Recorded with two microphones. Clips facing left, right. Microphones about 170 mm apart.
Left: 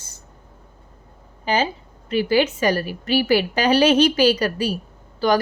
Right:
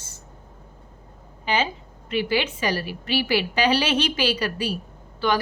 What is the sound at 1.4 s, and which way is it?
A woman's voice, 40° left (ahead or behind).